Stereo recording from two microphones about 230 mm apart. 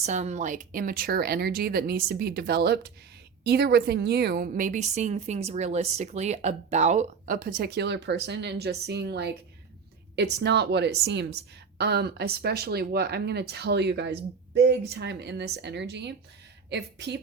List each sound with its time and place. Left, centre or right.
0.0 s a woman's voice: right